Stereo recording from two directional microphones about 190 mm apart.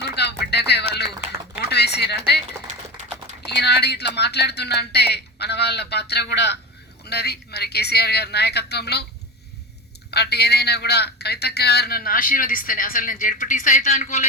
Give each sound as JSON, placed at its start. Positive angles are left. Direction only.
{"t": 0.0, "sound": "music", "side_deg": 60}
{"t": 1.7, "sound": "a sound", "side_deg": 60}
{"t": 2.5, "sound": "typing", "side_deg": -15}
{"t": 3.0, "sound": "typing", "side_deg": -40}
{"t": 3.5, "sound": "speech", "side_deg": 60}
{"t": 10.1, "sound": "a man's voice", "side_deg": 60}